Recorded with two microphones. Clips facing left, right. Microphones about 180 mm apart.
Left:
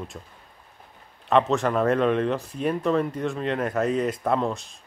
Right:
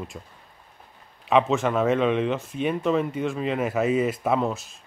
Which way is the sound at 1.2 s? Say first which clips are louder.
Even; centre (ahead or behind).